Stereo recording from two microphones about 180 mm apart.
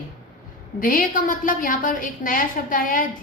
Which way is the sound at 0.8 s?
50° left (ahead or behind).